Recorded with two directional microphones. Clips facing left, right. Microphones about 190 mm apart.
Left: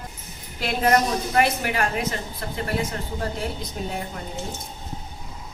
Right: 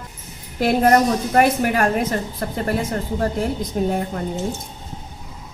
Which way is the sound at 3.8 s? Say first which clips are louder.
Right 12 dB; 50° right (ahead or behind).